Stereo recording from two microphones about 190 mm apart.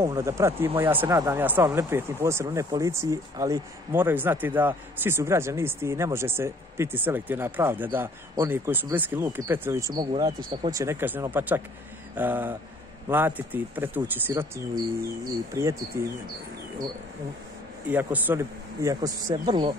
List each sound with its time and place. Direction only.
0.0 s speech: 15° right (ahead or behind)
15.5 s speech: 15° right (ahead or behind)
17.8 s speech: 10° right (ahead or behind)